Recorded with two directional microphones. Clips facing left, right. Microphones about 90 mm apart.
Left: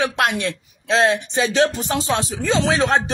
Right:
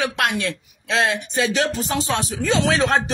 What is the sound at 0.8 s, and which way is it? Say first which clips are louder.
Speech: left 4 dB; 20° left (ahead or behind).